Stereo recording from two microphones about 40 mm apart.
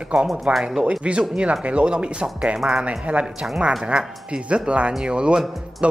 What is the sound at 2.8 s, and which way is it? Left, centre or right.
Speech, right.